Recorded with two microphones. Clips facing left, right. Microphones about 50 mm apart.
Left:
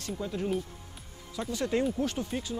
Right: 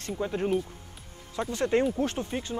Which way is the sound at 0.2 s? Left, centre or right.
Right.